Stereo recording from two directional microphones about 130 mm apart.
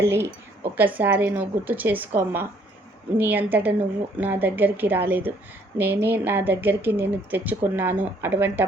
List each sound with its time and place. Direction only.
0.0 s a woman's voice: 20° right (ahead or behind)